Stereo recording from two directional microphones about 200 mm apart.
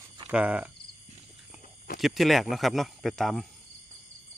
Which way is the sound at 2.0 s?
Centre (ahead or behind).